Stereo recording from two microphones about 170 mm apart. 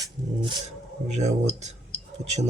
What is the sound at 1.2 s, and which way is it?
Speech, 40° right (ahead or behind).